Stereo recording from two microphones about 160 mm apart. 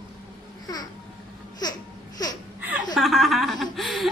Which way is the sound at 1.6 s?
25° left (ahead or behind).